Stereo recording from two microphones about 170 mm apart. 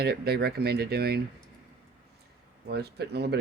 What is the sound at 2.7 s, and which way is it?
Speech, 70° right (ahead or behind).